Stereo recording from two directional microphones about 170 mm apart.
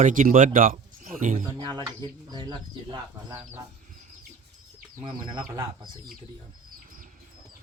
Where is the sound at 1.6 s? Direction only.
25° right (ahead or behind).